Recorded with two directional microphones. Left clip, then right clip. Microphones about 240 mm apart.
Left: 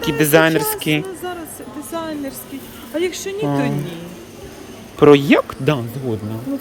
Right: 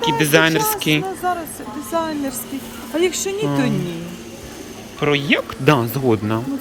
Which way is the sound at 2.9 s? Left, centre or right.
Right.